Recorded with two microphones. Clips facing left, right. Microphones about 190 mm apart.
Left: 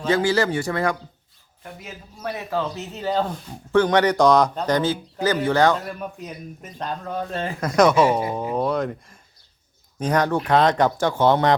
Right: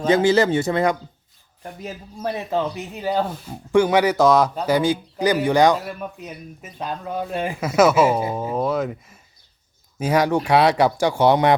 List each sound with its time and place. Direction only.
0.1 s a man's voice: 20° right (ahead or behind)